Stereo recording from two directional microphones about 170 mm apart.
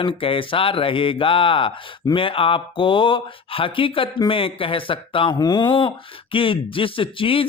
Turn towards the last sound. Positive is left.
turn(degrees=30)  # may be behind; listen again after turning